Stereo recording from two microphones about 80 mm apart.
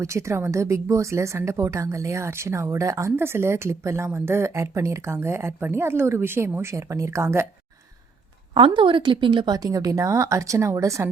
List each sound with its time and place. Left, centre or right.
0.0 s a woman's voice: right
8.5 s speech: right
9.6 s a woman's voice: right